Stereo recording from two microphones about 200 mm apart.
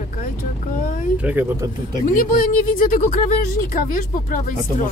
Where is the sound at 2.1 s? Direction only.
40° left (ahead or behind).